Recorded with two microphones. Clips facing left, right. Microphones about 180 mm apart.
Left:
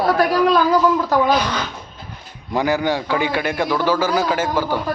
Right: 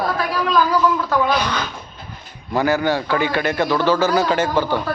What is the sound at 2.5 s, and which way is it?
A man's voice, 15° left (ahead or behind).